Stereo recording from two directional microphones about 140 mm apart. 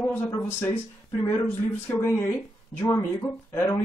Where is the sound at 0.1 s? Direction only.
15° left (ahead or behind).